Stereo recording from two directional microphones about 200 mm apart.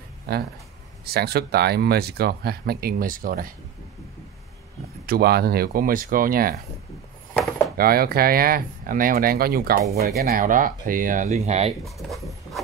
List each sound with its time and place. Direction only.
0.3 s speech: 50° right (ahead or behind)
5.0 s speech: 50° right (ahead or behind)
7.7 s speech: 50° right (ahead or behind)
11.8 s a sound: centre (ahead or behind)